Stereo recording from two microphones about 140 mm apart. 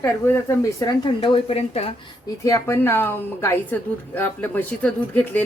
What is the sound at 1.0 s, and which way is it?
Speech, 40° left (ahead or behind).